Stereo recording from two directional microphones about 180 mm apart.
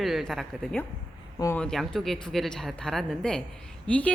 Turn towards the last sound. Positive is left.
turn(degrees=10)  # may be behind; listen again after turning